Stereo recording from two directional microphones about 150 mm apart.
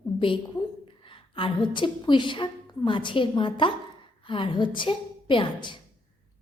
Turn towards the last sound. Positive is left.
turn(degrees=35)  # may be behind; listen again after turning